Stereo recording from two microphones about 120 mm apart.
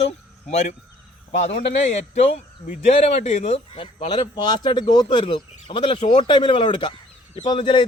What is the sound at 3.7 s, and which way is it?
A man's voice, 45° left (ahead or behind).